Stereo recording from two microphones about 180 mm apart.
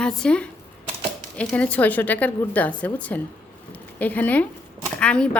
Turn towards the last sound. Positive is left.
turn(degrees=5)  # may be behind; listen again after turning